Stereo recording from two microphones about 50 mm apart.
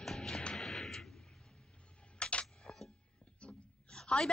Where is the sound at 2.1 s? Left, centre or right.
Left.